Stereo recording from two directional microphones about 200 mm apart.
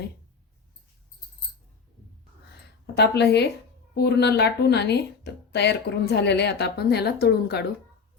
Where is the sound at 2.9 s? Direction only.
55° left (ahead or behind).